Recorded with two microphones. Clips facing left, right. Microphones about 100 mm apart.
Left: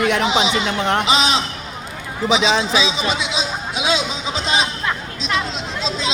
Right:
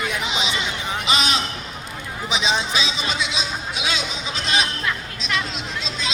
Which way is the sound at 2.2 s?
90° left.